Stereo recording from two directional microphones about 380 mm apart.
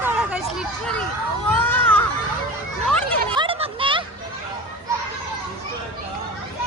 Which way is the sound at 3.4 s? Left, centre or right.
Centre.